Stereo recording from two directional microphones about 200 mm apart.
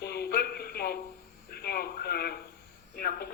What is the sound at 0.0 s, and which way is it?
Music, 55° left (ahead or behind).